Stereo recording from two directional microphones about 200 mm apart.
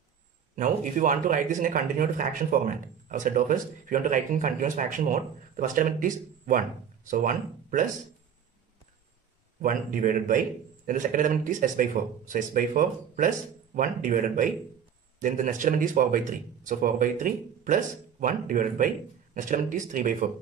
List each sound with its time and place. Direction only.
0.6 s speech: 40° right (ahead or behind)
9.6 s a man's voice: 45° right (ahead or behind)